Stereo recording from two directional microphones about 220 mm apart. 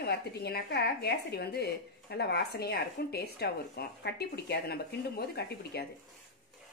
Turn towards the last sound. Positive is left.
turn(degrees=45)  # may be behind; listen again after turning